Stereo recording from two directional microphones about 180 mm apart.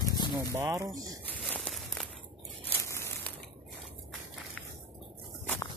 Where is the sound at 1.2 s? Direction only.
10° left (ahead or behind).